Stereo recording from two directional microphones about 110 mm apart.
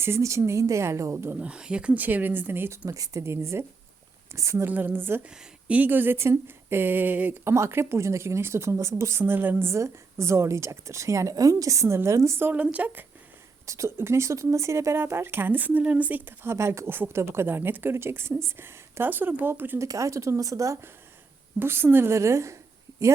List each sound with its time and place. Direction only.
0.0 s speech: 25° right (ahead or behind)
1.4 s speech: 10° right (ahead or behind)
2.8 s speech: 30° right (ahead or behind); by 7.3 s 15° right (ahead or behind)
7.4 s speech: 25° right (ahead or behind)
13.7 s speech: 25° right (ahead or behind)
19.9 s speech: 30° right (ahead or behind)